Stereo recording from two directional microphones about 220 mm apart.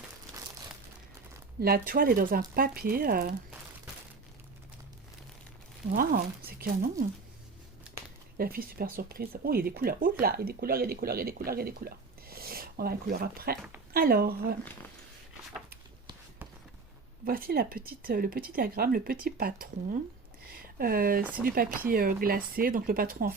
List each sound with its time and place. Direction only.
1.6 s speech: 45° right (ahead or behind)
5.9 s speech: 40° right (ahead or behind)
8.4 s speech: 45° right (ahead or behind)
17.2 s speech: 40° right (ahead or behind)
20.5 s a sound: 40° right (ahead or behind)
21.4 s speech: 40° right (ahead or behind)